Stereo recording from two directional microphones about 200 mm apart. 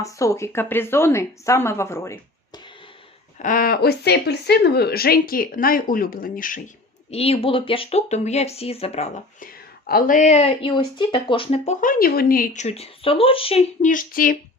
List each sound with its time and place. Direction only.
0.0 s a woman's voice: 15° left (ahead or behind)
3.3 s speech: 40° left (ahead or behind)
7.1 s speech: 30° left (ahead or behind); by 12.6 s 45° left (ahead or behind)
12.6 s speech: 30° left (ahead or behind)